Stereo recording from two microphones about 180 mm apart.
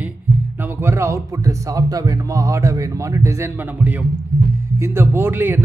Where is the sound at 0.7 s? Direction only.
15° right (ahead or behind).